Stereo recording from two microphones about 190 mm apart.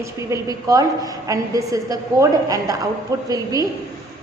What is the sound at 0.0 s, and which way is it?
A woman's voice, 15° right (ahead or behind).